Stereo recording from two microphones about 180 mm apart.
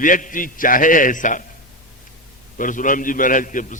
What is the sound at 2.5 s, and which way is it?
A man's voice, 45° left (ahead or behind).